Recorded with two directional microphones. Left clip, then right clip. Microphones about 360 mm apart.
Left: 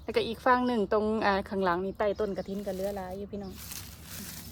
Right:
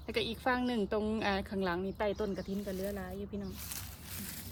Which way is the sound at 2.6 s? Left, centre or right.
Centre.